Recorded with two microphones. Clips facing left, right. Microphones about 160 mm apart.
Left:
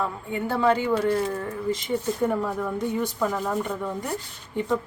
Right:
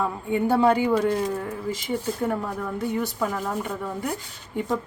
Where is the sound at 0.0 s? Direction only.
15° right (ahead or behind).